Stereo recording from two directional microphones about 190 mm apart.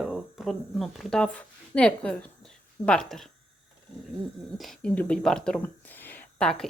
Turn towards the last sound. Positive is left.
turn(degrees=5)  # may be behind; listen again after turning